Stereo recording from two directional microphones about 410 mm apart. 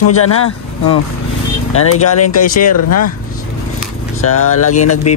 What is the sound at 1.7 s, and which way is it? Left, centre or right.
Speech, left.